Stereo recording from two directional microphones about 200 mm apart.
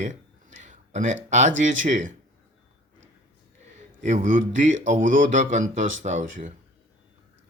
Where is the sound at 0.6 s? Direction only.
35° right (ahead or behind).